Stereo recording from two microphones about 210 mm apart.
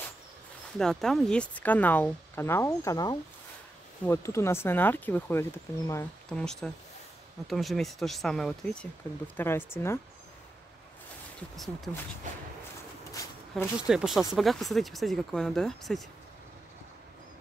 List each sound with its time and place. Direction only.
0.7 s speech: centre (ahead or behind)
11.5 s speech: centre (ahead or behind)
13.1 s a sound: 15° left (ahead or behind)
13.7 s speech: 5° right (ahead or behind)